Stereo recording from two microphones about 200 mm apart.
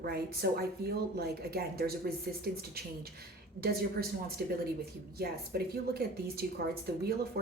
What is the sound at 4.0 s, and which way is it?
Speech, 50° right (ahead or behind).